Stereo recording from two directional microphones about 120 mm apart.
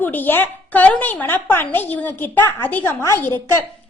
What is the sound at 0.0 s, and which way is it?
A woman's voice, 15° left (ahead or behind).